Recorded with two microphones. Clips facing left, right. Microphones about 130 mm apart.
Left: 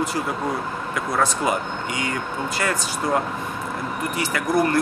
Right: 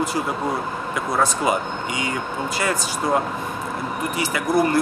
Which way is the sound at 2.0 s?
20° right (ahead or behind).